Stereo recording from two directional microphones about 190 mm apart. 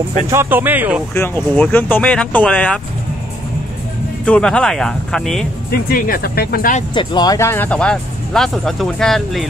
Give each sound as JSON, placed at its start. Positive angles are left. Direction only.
{"t": 0.3, "sound": "speech", "side_deg": -10}
{"t": 1.1, "sound": "speech", "side_deg": 10}
{"t": 4.3, "sound": "speech", "side_deg": 5}
{"t": 5.7, "sound": "speech", "side_deg": 50}
{"t": 6.9, "sound": "speech", "side_deg": 25}